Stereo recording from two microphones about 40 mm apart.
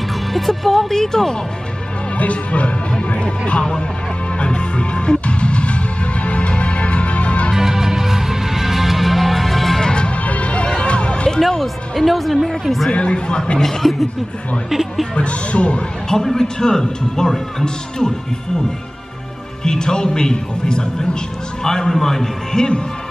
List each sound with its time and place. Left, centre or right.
0.3 s a man's voice: centre
2.1 s speech: left
4.4 s music: left
7.5 s music: centre
9.8 s music: left
11.4 s speech: centre
12.9 s speech: left
14.7 s speech: centre
15.1 s speech: left
16.1 s a man's voice: centre
19.6 s a man's voice: centre